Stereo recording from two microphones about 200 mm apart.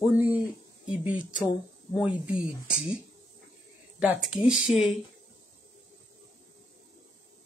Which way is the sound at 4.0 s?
5° right (ahead or behind).